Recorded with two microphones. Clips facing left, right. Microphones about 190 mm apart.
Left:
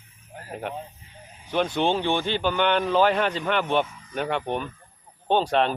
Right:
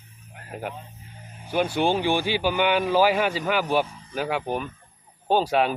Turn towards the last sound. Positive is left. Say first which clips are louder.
# even
turn(degrees=-5)  # may be behind; listen again after turning